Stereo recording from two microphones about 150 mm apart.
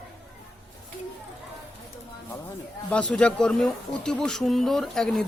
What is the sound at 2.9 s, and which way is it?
A woman's voice, 10° left (ahead or behind).